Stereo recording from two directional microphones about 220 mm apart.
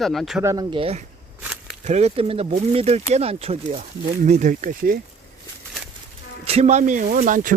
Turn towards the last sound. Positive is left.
turn(degrees=-35)  # may be behind; listen again after turning